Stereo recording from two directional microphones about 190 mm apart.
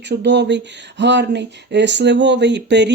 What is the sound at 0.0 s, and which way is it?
Speech, 65° right (ahead or behind).